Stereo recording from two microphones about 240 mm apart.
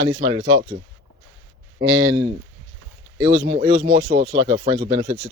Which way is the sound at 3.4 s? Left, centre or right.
Right.